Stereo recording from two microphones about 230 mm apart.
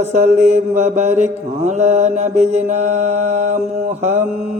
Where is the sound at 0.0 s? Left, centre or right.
Right.